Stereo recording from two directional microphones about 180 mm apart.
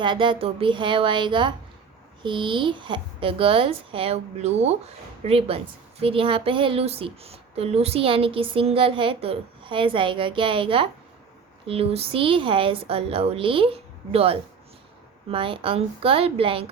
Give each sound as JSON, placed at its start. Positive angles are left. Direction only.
{"t": 0.0, "sound": "a woman's voice", "side_deg": -25}